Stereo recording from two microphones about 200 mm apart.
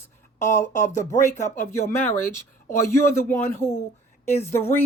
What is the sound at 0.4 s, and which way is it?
Speech, 15° left (ahead or behind).